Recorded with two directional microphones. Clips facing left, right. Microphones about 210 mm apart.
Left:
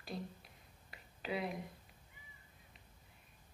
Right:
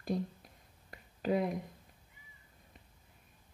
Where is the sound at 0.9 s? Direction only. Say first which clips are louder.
Right 9 dB; 45° right (ahead or behind).